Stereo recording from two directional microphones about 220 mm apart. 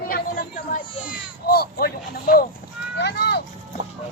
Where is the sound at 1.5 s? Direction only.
45° left (ahead or behind).